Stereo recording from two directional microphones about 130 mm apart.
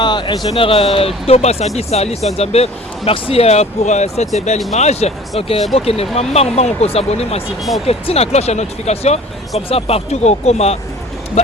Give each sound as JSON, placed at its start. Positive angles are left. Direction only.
{"t": 0.0, "sound": "speech", "side_deg": 35}